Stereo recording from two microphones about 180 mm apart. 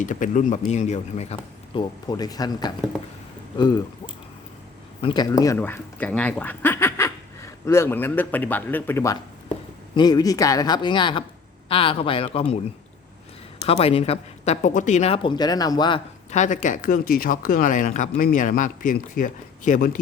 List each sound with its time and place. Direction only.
0.0 s speech: 45° left (ahead or behind); by 2.7 s 20° left (ahead or behind)
5.0 s speech: 20° left (ahead or behind)
13.7 s speech: 35° left (ahead or behind)
16.3 s speech: 45° left (ahead or behind)